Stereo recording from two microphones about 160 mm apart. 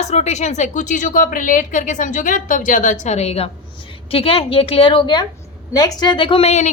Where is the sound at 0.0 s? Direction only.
45° left (ahead or behind).